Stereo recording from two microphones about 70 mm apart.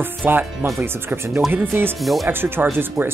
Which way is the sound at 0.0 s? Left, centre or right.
Right.